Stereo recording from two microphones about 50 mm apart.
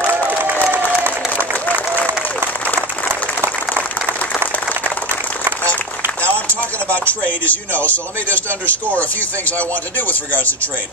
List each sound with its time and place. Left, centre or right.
0.0 s crowd: right
1.0 s applause: right
6.9 s speech: left